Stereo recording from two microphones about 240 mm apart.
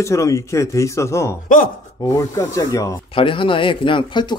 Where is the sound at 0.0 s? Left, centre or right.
Centre.